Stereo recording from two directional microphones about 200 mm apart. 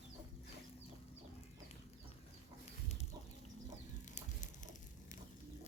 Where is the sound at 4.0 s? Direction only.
40° left (ahead or behind).